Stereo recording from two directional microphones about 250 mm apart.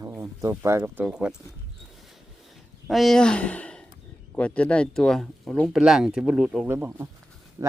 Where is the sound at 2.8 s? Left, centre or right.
Centre.